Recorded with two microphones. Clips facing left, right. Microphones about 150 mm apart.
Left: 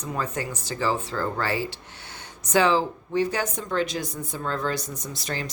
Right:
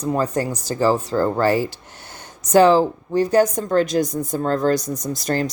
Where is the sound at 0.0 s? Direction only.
40° right (ahead or behind).